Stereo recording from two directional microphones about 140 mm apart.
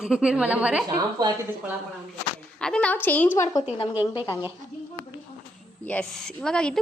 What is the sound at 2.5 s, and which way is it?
Speech, 5° left (ahead or behind).